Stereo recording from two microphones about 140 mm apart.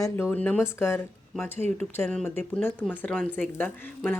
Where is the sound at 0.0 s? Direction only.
15° left (ahead or behind).